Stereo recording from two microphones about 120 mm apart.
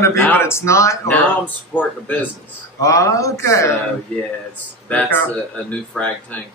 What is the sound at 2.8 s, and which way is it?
Speech, 25° left (ahead or behind).